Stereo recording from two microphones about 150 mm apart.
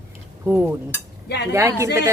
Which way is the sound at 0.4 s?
10° right (ahead or behind).